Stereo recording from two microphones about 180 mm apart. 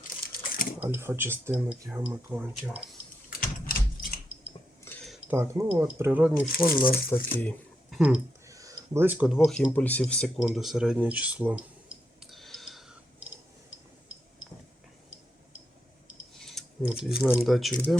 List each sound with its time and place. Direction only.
0.8 s speech: 10° right (ahead or behind)
3.2 s a sound: 55° left (ahead or behind)
4.9 s a sound: 5° left (ahead or behind)
5.3 s speech: 10° right (ahead or behind)
6.5 s speech: 55° left (ahead or behind)
7.3 s a sound: 10° left (ahead or behind)
7.9 s speech: 5° right (ahead or behind)
8.4 s speech: 20° right (ahead or behind)
9.7 s speech: 10° left (ahead or behind)
13.7 s a sound: 90° left
16.3 s scissors: centre (ahead or behind)
17.3 s speech: centre (ahead or behind)